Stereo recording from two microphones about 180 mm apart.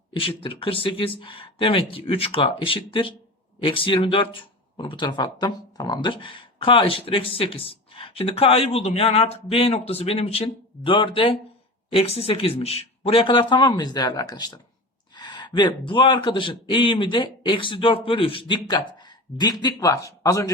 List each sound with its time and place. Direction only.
0.1 s speech: 30° left (ahead or behind)